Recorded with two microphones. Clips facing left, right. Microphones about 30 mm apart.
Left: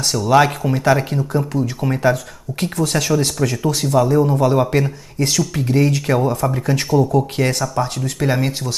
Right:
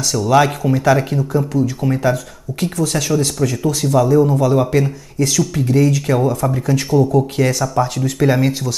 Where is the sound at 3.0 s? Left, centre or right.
Left.